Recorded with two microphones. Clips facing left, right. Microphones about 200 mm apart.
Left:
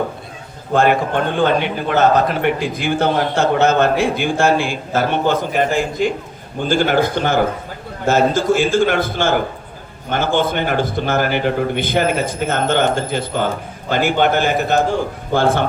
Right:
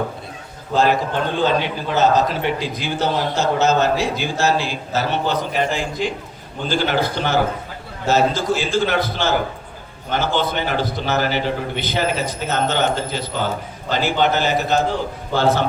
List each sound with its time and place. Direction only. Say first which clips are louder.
0.7 s a man's voice: left 3 dB; 55° left (ahead or behind)